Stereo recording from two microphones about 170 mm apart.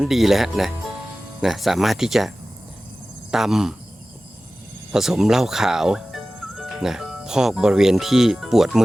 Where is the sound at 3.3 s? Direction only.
Centre (ahead or behind).